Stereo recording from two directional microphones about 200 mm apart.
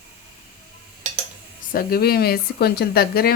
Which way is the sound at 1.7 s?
50° left (ahead or behind).